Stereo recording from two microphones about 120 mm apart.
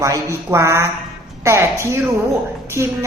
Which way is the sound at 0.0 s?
25° right (ahead or behind).